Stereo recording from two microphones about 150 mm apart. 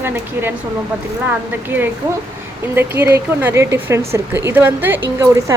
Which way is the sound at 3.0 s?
15° right (ahead or behind).